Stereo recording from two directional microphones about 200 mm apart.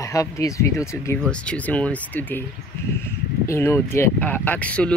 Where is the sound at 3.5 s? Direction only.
15° left (ahead or behind).